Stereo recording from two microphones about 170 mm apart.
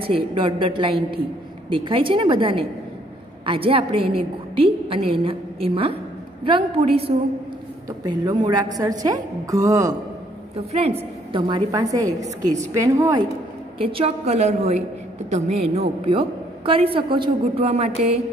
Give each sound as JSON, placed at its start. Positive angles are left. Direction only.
{"t": 0.1, "sound": "a woman's voice", "side_deg": -30}
{"t": 9.0, "sound": "a woman's voice", "side_deg": -20}
{"t": 10.5, "sound": "a woman's voice", "side_deg": -35}
{"t": 13.7, "sound": "a woman's voice", "side_deg": -35}